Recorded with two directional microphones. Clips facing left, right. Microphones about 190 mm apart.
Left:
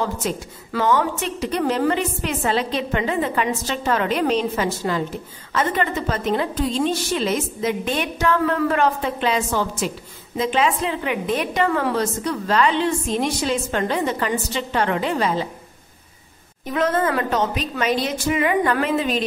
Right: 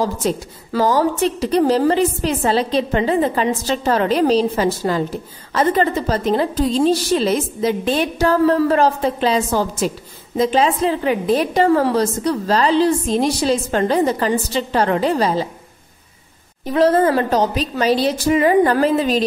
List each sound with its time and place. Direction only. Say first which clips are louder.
0.2 s a woman's voice: right 5 dB; 35° right (ahead or behind)
16.6 s a woman's voice: right 6 dB; 35° right (ahead or behind)